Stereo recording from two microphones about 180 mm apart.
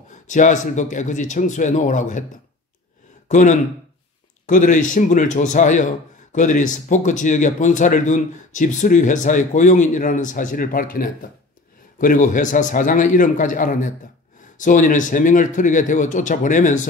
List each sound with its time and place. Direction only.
0.1 s speech: 45° left (ahead or behind)
3.3 s speech: 45° left (ahead or behind)